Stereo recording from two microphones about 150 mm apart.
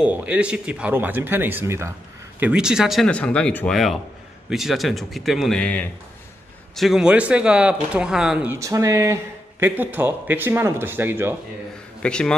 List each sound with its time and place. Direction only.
0.0 s speech: 10° right (ahead or behind)
2.4 s speech: 5° right (ahead or behind)
8.5 s speech: 20° right (ahead or behind)
12.0 s a man's voice: 5° left (ahead or behind)